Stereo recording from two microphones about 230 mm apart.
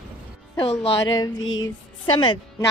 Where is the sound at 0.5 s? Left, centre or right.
Left.